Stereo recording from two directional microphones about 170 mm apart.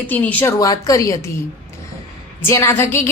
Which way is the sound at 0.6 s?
20° left (ahead or behind).